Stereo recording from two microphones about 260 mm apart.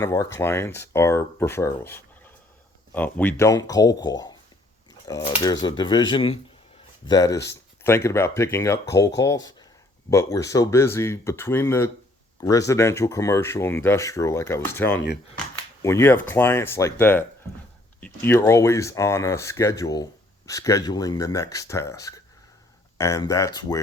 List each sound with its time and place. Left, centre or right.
0.0 s speech: centre